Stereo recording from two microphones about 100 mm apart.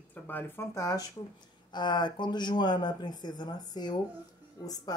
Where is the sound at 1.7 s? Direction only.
50° left (ahead or behind).